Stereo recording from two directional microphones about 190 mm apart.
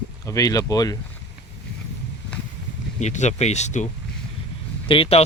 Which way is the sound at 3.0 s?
40° left (ahead or behind).